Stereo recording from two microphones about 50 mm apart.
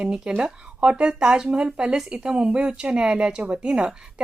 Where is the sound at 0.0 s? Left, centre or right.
Centre.